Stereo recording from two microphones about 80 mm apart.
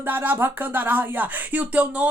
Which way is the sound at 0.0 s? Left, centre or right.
Right.